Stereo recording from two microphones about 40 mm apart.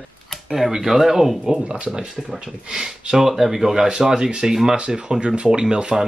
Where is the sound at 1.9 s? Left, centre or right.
Centre.